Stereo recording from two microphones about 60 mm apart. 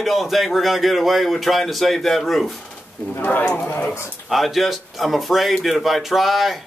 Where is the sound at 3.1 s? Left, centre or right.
Left.